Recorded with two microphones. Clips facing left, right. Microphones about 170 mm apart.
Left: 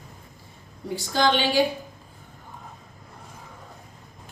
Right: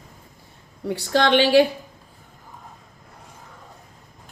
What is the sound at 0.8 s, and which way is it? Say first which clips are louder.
Speech: right 3 dB; 70° right (ahead or behind).